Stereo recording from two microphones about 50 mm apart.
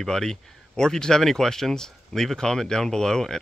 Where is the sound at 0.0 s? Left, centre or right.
Centre.